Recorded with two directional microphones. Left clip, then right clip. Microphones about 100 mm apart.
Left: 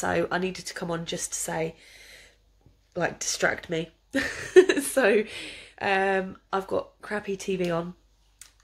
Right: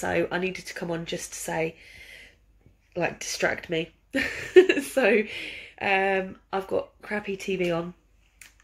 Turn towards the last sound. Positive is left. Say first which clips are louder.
# right 1 dB
turn(degrees=25)  # may be behind; listen again after turning